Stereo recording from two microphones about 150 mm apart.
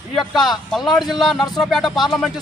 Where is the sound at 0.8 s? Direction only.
30° left (ahead or behind).